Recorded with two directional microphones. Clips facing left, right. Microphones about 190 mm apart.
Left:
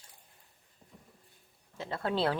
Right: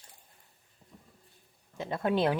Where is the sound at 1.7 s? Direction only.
20° right (ahead or behind).